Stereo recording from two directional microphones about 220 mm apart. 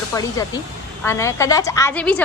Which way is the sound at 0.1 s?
15° left (ahead or behind).